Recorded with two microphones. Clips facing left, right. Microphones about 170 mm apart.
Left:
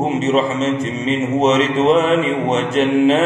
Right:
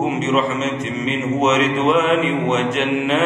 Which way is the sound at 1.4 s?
35° left (ahead or behind).